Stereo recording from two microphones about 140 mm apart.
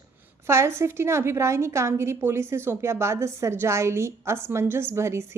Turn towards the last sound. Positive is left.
turn(degrees=-20)  # may be behind; listen again after turning